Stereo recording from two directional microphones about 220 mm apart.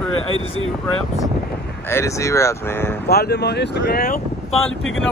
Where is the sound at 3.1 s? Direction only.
45° left (ahead or behind).